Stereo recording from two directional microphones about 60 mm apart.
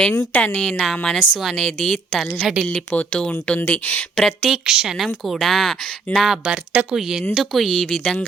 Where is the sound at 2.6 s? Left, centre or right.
Centre.